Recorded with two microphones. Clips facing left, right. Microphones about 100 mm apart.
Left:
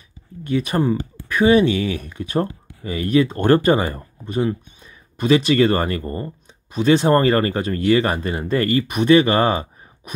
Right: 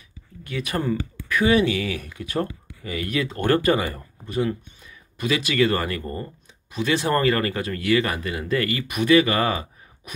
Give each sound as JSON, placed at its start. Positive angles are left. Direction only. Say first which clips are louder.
{"t": 0.5, "sound": "speech", "louder": "left 6 dB", "side_deg": 25}